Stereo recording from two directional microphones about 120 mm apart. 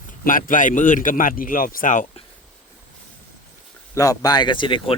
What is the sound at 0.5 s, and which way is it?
A man's voice, 90° left.